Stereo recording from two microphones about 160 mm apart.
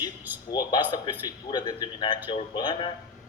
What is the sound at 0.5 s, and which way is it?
A man's voice, 25° left (ahead or behind).